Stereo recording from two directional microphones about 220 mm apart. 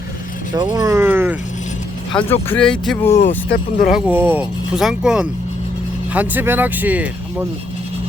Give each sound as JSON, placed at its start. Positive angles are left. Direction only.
{"t": 0.5, "sound": "speech", "side_deg": -15}
{"t": 2.1, "sound": "speech", "side_deg": 10}
{"t": 3.2, "sound": "speech", "side_deg": 35}
{"t": 3.8, "sound": "speech", "side_deg": -5}